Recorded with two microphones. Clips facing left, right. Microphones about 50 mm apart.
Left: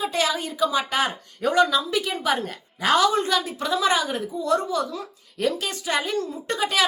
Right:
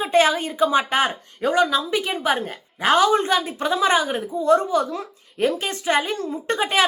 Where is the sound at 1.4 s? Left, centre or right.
Right.